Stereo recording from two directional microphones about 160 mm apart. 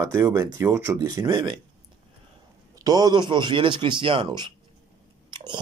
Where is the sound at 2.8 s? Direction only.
25° right (ahead or behind).